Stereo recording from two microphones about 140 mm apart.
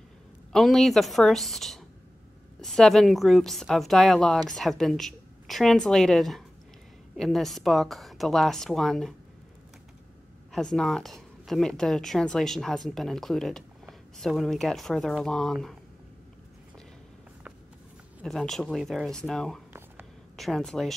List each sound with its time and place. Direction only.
0.5 s a woman's voice: centre (ahead or behind)
10.5 s a woman's voice: 5° left (ahead or behind)
18.2 s a woman's voice: 5° left (ahead or behind)